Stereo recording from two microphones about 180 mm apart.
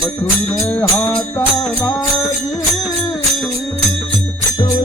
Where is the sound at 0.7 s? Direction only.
20° left (ahead or behind).